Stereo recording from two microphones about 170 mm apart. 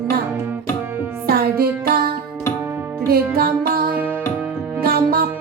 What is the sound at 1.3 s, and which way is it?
Music, 65° right (ahead or behind).